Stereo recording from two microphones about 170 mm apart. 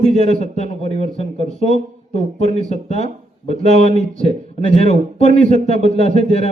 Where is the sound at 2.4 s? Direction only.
40° right (ahead or behind).